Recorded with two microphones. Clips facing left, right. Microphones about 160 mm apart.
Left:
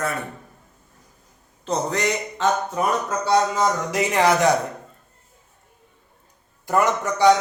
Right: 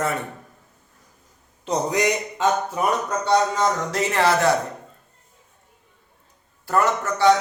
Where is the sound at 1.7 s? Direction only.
15° right (ahead or behind).